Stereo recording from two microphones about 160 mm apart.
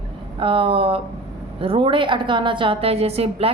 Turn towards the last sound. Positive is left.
turn(degrees=-40)  # may be behind; listen again after turning